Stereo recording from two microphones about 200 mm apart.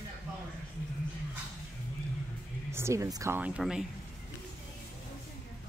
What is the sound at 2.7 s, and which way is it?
Speech, 15° right (ahead or behind).